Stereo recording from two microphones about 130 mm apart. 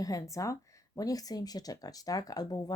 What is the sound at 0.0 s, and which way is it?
Speech, 25° left (ahead or behind).